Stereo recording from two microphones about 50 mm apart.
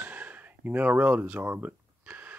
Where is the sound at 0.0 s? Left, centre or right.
Right.